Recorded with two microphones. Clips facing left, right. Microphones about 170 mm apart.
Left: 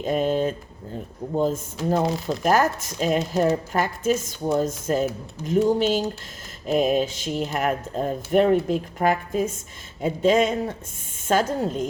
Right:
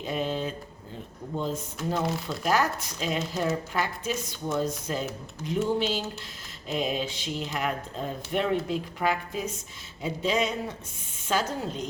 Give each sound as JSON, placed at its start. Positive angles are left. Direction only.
{"t": 0.0, "sound": "speech", "side_deg": 45}